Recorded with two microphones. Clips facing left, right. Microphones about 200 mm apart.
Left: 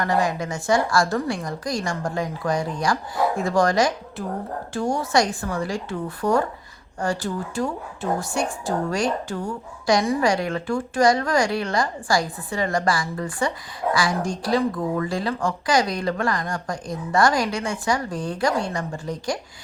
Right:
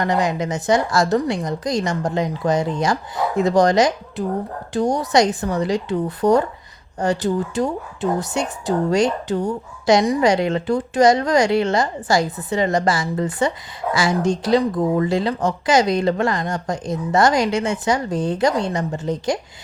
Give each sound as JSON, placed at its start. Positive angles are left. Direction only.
{"t": 0.0, "sound": "speech", "side_deg": -20}